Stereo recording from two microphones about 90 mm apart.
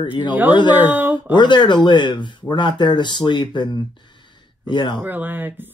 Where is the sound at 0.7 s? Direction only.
20° right (ahead or behind).